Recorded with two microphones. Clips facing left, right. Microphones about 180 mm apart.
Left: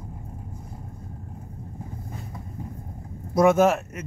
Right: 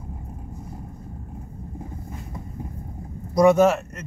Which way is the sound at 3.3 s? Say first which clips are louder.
Right 2 dB; centre (ahead or behind).